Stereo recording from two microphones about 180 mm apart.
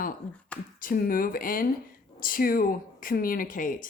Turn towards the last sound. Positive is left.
turn(degrees=50)  # may be behind; listen again after turning